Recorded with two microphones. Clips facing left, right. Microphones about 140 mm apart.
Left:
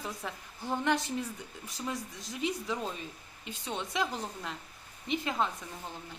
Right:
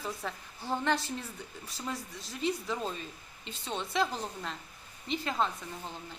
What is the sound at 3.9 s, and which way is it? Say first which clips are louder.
Speech: right 3 dB; 15° left (ahead or behind).